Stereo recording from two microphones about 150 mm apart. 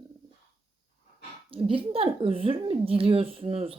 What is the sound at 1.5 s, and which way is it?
Speech, 35° right (ahead or behind).